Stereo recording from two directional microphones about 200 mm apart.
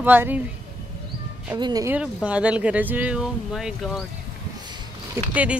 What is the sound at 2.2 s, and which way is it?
Speech, 5° right (ahead or behind).